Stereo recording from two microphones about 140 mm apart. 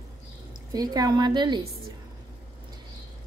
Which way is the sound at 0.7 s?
25° right (ahead or behind).